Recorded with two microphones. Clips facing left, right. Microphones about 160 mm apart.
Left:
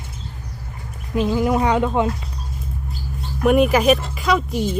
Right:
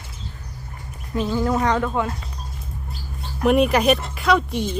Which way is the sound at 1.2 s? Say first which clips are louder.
Left 3 dB; 15° left (ahead or behind).